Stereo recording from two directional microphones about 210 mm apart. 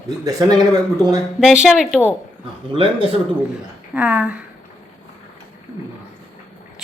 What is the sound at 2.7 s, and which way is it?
Speech, 25° right (ahead or behind).